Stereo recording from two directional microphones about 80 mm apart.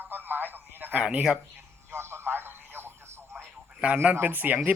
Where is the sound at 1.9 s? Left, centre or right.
Right.